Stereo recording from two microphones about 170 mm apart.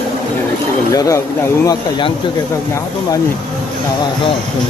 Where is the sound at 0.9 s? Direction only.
20° left (ahead or behind).